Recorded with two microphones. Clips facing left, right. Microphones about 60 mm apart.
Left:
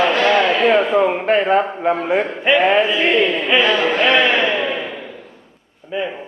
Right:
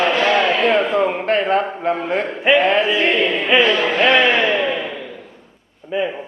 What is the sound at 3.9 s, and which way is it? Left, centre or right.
Speech, centre.